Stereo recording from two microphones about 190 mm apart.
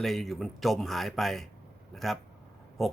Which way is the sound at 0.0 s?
Centre (ahead or behind).